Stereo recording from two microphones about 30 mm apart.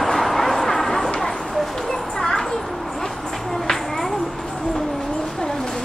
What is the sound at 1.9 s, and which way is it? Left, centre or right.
Children playing, centre.